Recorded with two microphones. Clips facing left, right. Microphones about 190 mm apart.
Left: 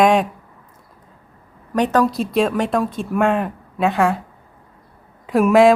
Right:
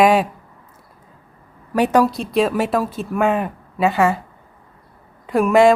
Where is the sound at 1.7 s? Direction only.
10° right (ahead or behind).